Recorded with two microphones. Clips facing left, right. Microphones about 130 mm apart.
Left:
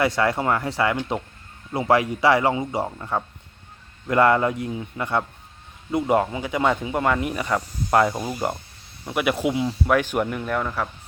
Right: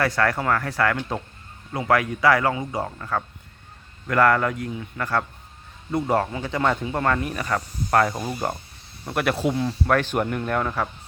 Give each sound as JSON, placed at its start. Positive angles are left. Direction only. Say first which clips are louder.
{"t": 0.0, "sound": "speech", "louder": "left 1 dB", "side_deg": 20}
{"t": 8.1, "sound": "speech", "louder": "left 1 dB", "side_deg": 5}